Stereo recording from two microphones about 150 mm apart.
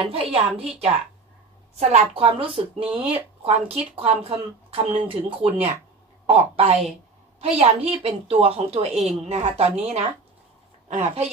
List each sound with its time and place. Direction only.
0.0 s a woman's voice: 40° right (ahead or behind)